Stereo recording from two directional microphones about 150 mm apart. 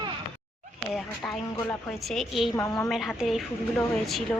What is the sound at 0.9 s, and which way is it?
A woman's voice, centre (ahead or behind).